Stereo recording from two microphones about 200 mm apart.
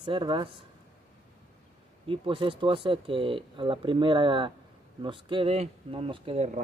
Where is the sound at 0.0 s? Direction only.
25° right (ahead or behind).